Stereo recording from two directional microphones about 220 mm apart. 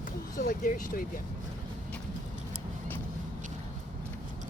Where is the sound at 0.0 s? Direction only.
40° left (ahead or behind).